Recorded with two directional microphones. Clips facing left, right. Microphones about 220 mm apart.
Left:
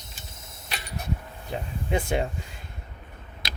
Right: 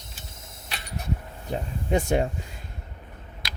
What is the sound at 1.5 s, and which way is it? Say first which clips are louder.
Speech: right 3 dB; 45° right (ahead or behind).